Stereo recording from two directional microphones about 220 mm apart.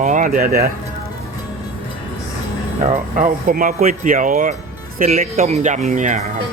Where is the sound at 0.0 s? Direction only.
35° right (ahead or behind).